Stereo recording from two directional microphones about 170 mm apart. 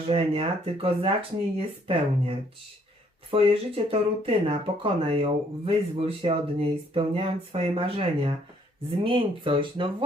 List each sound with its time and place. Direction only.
0.1 s speech: 35° right (ahead or behind)